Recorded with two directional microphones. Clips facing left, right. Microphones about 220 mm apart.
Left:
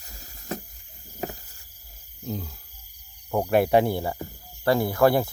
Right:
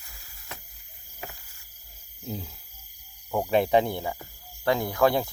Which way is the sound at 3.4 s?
10° left (ahead or behind).